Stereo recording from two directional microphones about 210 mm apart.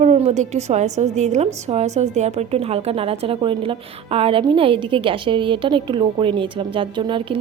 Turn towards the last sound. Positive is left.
turn(degrees=-25)  # may be behind; listen again after turning